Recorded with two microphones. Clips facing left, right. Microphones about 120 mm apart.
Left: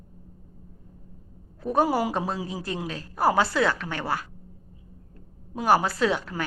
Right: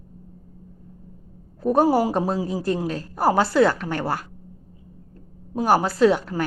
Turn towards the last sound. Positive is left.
turn(degrees=-35)  # may be behind; listen again after turning